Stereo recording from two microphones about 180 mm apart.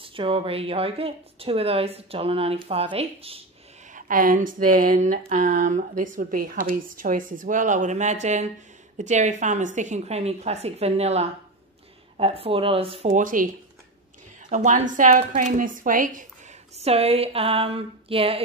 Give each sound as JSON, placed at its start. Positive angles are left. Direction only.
{"t": 0.0, "sound": "a woman's voice", "side_deg": -30}
{"t": 3.9, "sound": "a woman's voice", "side_deg": -50}
{"t": 13.1, "sound": "a woman's voice", "side_deg": -50}
{"t": 14.5, "sound": "a woman's voice", "side_deg": -45}
{"t": 16.7, "sound": "a woman's voice", "side_deg": -35}